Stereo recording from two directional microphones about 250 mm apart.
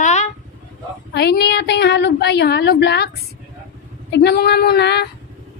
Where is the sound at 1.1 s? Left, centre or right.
Left.